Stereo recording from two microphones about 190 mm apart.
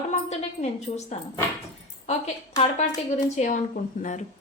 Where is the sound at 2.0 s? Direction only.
35° left (ahead or behind).